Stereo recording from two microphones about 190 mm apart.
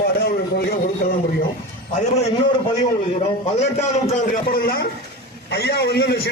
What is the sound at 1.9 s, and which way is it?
Speech, 35° left (ahead or behind).